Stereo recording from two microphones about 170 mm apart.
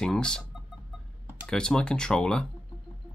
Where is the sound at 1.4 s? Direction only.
5° left (ahead or behind).